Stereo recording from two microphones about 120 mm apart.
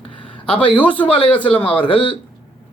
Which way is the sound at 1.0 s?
45° left (ahead or behind).